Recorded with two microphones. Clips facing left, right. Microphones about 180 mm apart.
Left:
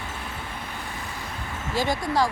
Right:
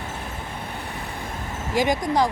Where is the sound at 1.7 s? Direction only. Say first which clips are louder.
Right 4 dB; 15° right (ahead or behind).